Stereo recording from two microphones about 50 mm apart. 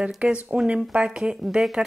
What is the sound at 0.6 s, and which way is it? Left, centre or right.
Speech, right.